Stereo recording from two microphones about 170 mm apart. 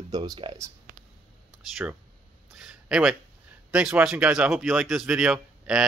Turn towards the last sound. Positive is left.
turn(degrees=-5)  # may be behind; listen again after turning